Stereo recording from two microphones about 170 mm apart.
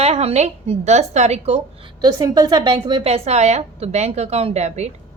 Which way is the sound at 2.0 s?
25° right (ahead or behind).